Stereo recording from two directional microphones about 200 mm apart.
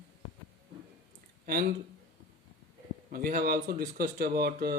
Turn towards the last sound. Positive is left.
turn(degrees=-50)  # may be behind; listen again after turning